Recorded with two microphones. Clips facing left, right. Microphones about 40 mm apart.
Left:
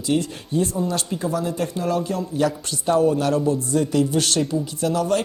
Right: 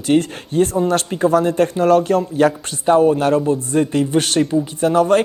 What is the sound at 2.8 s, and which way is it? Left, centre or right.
A man's voice, right.